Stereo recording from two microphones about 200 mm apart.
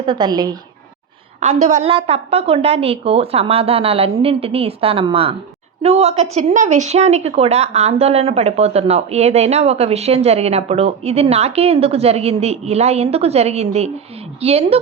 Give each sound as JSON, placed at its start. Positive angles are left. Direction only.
{"t": 0.0, "sound": "a woman's voice", "side_deg": -20}
{"t": 1.6, "sound": "a woman's voice", "side_deg": -35}